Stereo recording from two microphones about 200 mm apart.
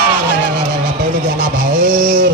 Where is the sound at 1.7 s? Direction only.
40° right (ahead or behind).